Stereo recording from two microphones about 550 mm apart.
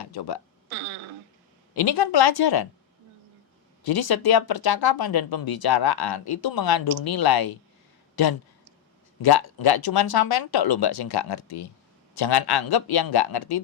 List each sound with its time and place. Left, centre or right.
0.0 s speech: left
0.7 s a sound: right
1.7 s speech: left
3.8 s speech: left